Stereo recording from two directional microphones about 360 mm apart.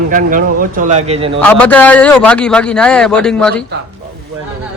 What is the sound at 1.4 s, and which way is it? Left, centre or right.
A man's voice, centre.